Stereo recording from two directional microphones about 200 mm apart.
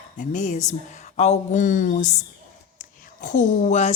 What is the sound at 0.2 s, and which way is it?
A woman's voice, 35° left (ahead or behind).